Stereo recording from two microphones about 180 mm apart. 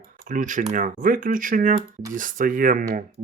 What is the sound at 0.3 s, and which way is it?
Speech, 45° right (ahead or behind).